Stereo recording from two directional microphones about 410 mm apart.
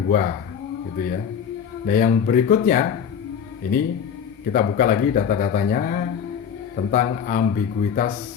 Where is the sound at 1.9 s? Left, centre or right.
Left.